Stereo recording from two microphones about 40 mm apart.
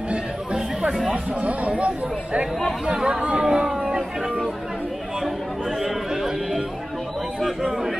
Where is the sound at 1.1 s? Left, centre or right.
Right.